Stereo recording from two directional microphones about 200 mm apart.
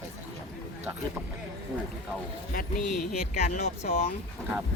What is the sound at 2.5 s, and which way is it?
Speech, 45° left (ahead or behind).